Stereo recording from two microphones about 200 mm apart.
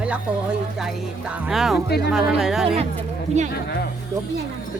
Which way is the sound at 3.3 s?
35° right (ahead or behind).